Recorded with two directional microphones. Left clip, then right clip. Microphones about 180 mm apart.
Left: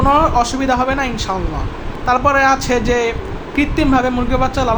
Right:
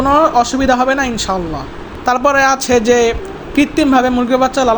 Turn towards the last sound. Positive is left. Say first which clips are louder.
# right 4 dB
turn(degrees=-30)  # may be behind; listen again after turning